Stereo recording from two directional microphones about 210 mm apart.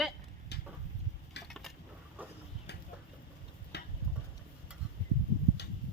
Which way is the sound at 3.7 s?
55° left (ahead or behind).